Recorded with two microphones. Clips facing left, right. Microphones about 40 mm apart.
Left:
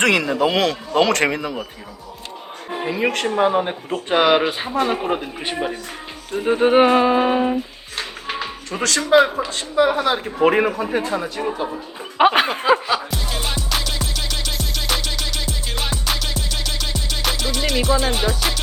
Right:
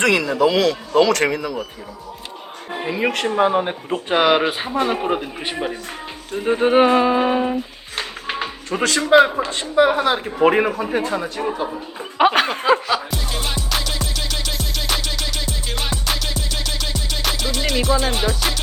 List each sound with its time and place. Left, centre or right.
0.0 s a man's voice: left
2.7 s speech: centre
8.7 s speech: centre
9.7 s a sound: centre